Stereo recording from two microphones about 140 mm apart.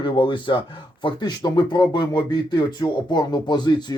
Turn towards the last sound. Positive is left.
turn(degrees=30)  # may be behind; listen again after turning